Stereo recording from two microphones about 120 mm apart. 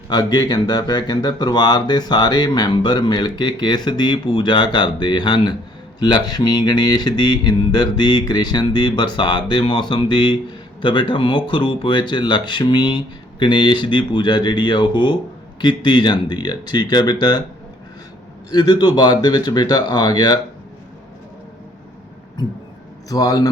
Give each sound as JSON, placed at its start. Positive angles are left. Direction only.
{"t": 0.1, "sound": "speech", "side_deg": 35}
{"t": 18.5, "sound": "speech", "side_deg": 35}
{"t": 23.0, "sound": "speech", "side_deg": 30}